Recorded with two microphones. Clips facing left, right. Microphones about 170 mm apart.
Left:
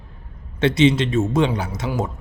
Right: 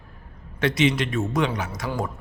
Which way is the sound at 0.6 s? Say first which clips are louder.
Left 5 dB; 25° left (ahead or behind).